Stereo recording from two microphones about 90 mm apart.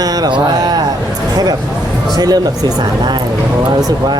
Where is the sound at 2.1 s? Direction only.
45° right (ahead or behind).